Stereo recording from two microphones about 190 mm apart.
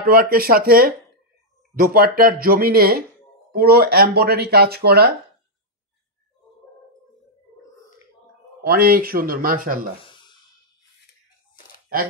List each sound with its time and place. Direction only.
0.0 s speech: 50° right (ahead or behind)
8.6 s speech: 50° right (ahead or behind)
10.1 s a sound: 25° left (ahead or behind)